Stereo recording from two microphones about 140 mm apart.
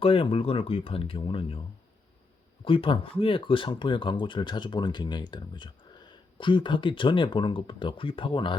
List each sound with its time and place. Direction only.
0.0 s speech: 40° left (ahead or behind)
2.6 s speech: 40° left (ahead or behind)